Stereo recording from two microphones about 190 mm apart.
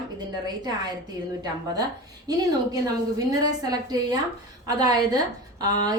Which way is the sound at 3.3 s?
20° right (ahead or behind).